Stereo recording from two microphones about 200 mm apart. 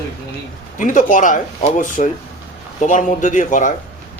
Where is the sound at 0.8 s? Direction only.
40° left (ahead or behind).